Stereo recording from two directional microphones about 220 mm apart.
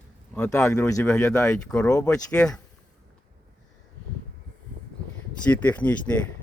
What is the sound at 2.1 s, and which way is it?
Speech, 5° left (ahead or behind).